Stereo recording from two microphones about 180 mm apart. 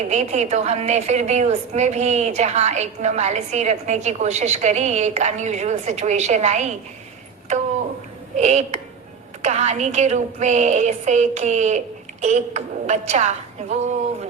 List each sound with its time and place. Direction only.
0.0 s a woman's voice: 40° right (ahead or behind)
8.4 s a woman's voice: 40° right (ahead or behind)